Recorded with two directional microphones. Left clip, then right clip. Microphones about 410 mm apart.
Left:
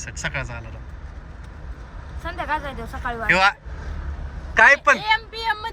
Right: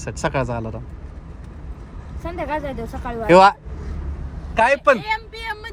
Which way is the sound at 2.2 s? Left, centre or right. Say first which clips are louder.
Even; right.